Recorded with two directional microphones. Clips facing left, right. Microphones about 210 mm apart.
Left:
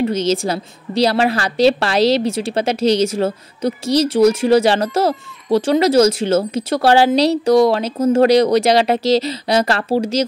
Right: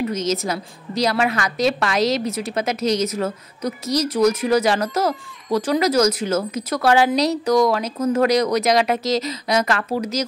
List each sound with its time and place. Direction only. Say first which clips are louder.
0.0 s a woman's voice: left 5 dB; 30° left (ahead or behind)